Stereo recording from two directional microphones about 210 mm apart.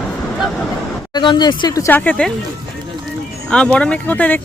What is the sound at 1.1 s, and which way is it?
Speech, 20° left (ahead or behind).